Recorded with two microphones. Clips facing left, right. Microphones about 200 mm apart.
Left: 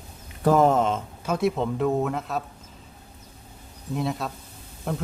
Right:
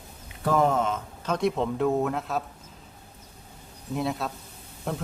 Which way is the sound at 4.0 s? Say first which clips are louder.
Even; centre (ahead or behind).